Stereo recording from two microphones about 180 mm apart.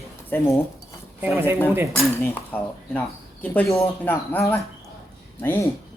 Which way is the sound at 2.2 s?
10° left (ahead or behind).